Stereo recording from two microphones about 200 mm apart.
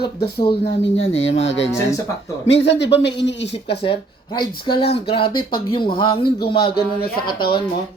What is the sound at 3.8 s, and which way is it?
Speech, 25° left (ahead or behind).